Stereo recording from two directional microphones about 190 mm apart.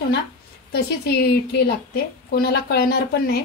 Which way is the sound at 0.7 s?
60° left (ahead or behind).